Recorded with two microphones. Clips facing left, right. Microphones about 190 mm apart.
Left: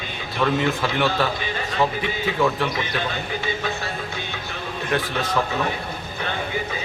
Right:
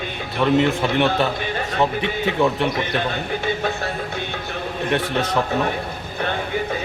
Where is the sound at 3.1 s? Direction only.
55° right (ahead or behind).